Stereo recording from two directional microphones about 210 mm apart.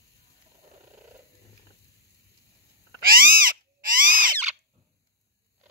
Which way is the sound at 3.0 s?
45° right (ahead or behind).